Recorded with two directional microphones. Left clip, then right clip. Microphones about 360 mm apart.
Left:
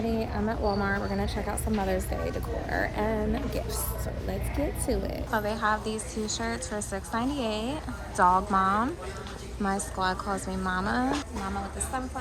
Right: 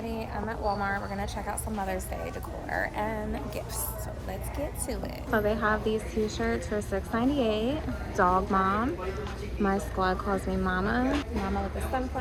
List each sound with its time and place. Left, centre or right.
0.1 s a woman's voice: centre
5.3 s a woman's voice: centre